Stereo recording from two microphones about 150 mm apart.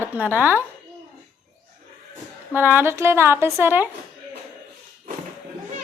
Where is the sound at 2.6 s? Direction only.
15° right (ahead or behind).